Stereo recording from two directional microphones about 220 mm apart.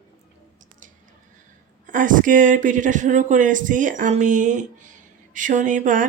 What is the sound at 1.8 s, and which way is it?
Speech, 35° right (ahead or behind).